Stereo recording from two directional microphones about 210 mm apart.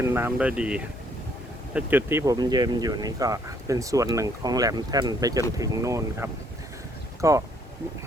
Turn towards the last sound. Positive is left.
turn(degrees=-15)  # may be behind; listen again after turning